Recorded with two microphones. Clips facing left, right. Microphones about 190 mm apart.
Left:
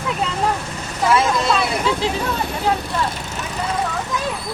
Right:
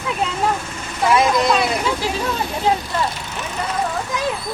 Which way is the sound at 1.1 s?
15° right (ahead or behind).